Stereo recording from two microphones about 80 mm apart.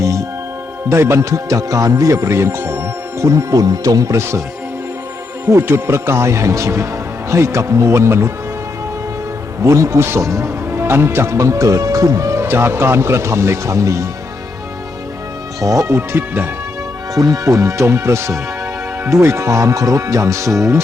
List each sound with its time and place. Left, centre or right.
0.0 s music: right
0.9 s speech: right
5.5 s speech: right
9.6 s speech: right
10.7 s speech: right
15.6 s speech: right
16.0 s speech: right
17.2 s speech: right